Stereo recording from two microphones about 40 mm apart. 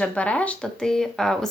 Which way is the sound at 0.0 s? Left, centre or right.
Left.